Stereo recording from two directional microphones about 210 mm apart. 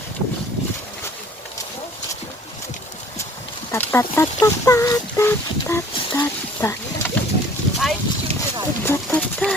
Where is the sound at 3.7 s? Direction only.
10° left (ahead or behind).